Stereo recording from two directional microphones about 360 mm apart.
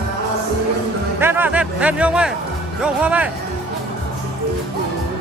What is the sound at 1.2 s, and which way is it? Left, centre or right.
Speech, centre.